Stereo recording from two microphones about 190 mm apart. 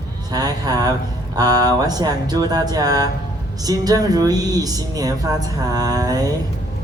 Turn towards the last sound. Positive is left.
turn(degrees=-20)  # may be behind; listen again after turning